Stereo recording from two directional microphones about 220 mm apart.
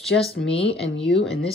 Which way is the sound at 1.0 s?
Centre (ahead or behind).